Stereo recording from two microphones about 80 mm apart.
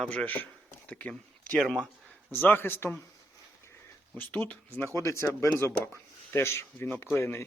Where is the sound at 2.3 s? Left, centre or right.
Left.